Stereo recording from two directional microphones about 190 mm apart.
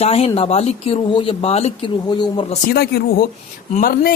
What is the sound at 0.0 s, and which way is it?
Speech, 30° left (ahead or behind).